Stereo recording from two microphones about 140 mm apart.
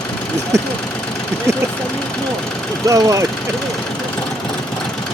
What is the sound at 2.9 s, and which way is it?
Speech, 25° right (ahead or behind).